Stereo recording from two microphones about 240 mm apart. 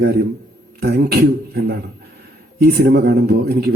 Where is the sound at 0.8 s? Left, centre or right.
Right.